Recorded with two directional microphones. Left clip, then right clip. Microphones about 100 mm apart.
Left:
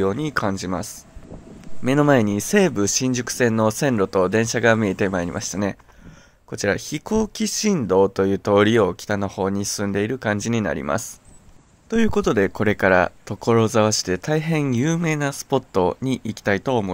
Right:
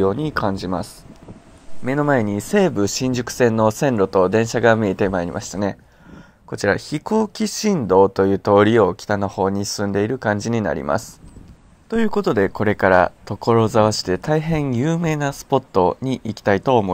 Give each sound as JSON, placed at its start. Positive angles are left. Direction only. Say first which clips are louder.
{"t": 0.0, "sound": "speech", "louder": "right 2 dB", "side_deg": 5}
{"t": 1.9, "sound": "speech", "louder": "left 1 dB", "side_deg": 55}
{"t": 2.2, "sound": "speech", "louder": "right 1 dB", "side_deg": 30}
{"t": 11.9, "sound": "speech", "louder": "right 1 dB", "side_deg": 35}
{"t": 16.5, "sound": "speech", "louder": "right 7 dB", "side_deg": 5}